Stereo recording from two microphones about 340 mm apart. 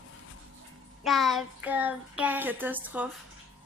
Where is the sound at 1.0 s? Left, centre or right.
Centre.